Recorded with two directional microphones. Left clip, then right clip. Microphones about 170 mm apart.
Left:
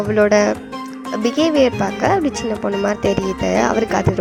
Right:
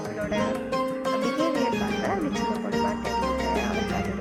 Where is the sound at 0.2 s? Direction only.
45° left (ahead or behind).